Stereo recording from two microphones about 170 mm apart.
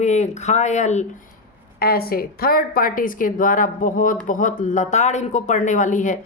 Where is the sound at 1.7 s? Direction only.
65° left (ahead or behind).